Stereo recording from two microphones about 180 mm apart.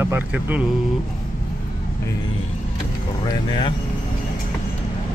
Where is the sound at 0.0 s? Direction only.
10° right (ahead or behind).